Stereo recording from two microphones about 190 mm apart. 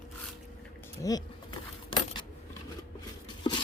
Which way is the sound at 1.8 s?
25° left (ahead or behind).